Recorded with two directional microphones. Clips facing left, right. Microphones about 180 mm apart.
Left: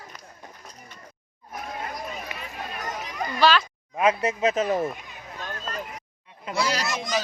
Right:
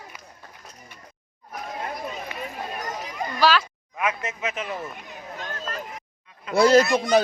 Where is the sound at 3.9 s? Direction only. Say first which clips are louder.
Left 6 dB; 30° left (ahead or behind).